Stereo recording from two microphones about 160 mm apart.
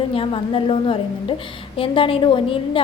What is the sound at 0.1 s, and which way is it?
A woman's voice, 35° left (ahead or behind).